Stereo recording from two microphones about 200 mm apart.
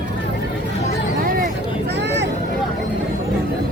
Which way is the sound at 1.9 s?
60° right (ahead or behind).